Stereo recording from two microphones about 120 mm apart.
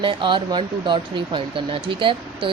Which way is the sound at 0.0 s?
45° right (ahead or behind).